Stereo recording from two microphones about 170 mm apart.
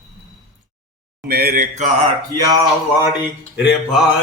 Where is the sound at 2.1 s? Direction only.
20° right (ahead or behind).